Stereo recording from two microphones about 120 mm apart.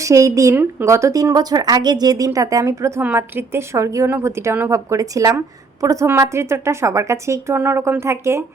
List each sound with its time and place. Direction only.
0.0 s speech: 25° right (ahead or behind)